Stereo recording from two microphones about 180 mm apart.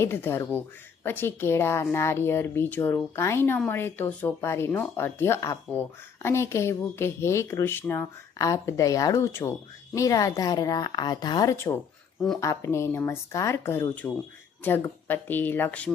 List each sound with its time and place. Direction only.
0.0 s speech: 10° left (ahead or behind)